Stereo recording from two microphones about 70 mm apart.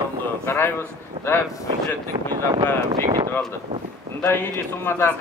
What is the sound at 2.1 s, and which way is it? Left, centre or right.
Speech, right.